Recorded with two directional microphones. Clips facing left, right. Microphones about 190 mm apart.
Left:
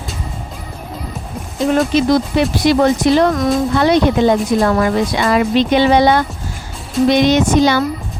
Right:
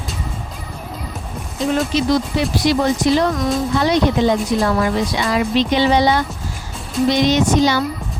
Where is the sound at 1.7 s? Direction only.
55° left (ahead or behind).